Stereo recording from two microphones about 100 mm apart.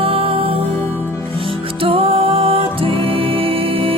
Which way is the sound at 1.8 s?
65° right (ahead or behind).